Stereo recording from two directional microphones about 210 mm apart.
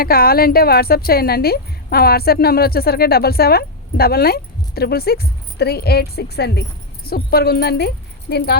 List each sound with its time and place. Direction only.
0.0 s speech: 45° left (ahead or behind)